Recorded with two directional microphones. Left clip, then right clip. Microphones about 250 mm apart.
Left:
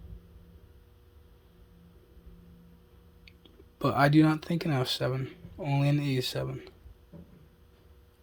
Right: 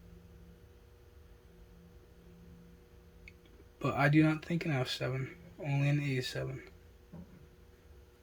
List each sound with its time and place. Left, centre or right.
3.8 s speech: left